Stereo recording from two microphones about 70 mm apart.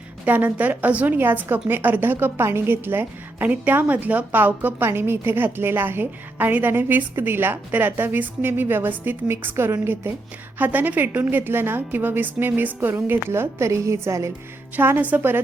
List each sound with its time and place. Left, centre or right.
0.3 s a woman's voice: right
10.6 s a woman's voice: right
14.8 s a woman's voice: right